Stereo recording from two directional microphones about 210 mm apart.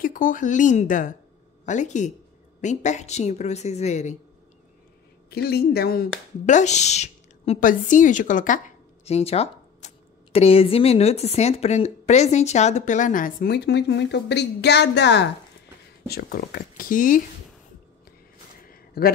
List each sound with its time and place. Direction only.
0.0 s speech: 40° left (ahead or behind)
5.3 s speech: 50° left (ahead or behind)
18.7 s a sound: 45° left (ahead or behind)